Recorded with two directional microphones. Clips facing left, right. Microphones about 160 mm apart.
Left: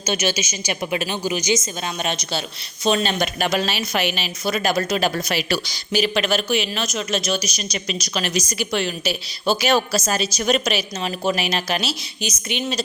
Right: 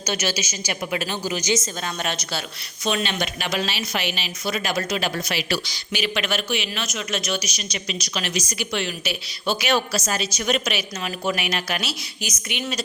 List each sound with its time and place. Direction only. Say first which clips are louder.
0.0 s a woman's voice: left 3 dB; 20° left (ahead or behind)
2.8 s a woman's voice: left 4 dB; 35° left (ahead or behind)